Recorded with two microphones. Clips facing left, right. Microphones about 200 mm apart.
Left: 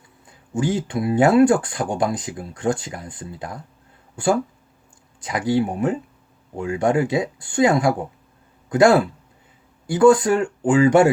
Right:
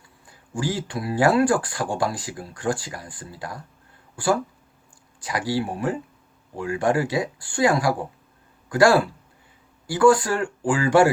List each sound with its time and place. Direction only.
0.3 s speech: 20° left (ahead or behind)